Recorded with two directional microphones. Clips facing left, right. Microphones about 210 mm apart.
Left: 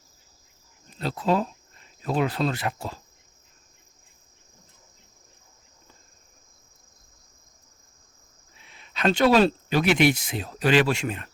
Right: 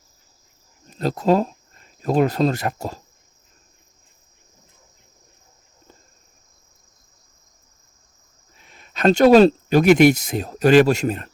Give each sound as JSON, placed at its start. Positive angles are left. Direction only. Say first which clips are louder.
{"t": 0.9, "sound": "speech", "louder": "right 6 dB", "side_deg": -45}
{"t": 8.5, "sound": "speech", "louder": "right 3 dB", "side_deg": -45}